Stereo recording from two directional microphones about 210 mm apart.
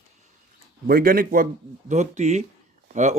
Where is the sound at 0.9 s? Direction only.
45° right (ahead or behind).